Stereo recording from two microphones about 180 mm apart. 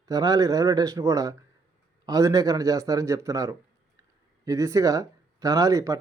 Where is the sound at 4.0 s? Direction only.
20° right (ahead or behind).